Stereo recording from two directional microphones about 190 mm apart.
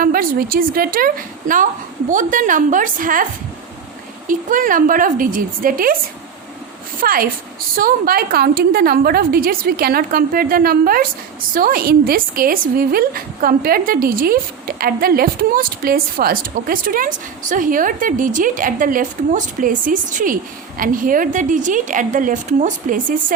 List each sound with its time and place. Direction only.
0.0 s a woman's voice: 50° right (ahead or behind)
4.3 s a woman's voice: 45° right (ahead or behind)
7.0 s a woman's voice: 50° right (ahead or behind)